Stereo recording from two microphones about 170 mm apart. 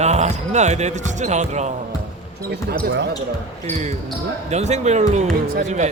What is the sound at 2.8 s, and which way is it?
Speech, 90° right.